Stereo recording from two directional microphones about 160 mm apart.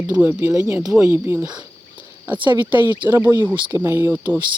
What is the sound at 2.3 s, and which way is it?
Speech, 30° right (ahead or behind).